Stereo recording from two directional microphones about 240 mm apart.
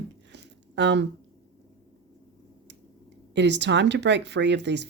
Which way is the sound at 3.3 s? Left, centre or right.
Right.